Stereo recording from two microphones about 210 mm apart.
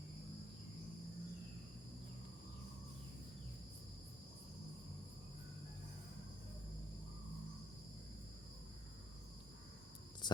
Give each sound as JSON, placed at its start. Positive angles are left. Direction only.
{"t": 10.2, "sound": "hum", "side_deg": 20}